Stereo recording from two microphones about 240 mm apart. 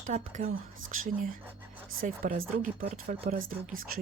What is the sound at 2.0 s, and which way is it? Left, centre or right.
Speech, right.